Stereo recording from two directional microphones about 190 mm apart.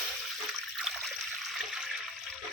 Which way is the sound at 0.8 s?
Centre (ahead or behind).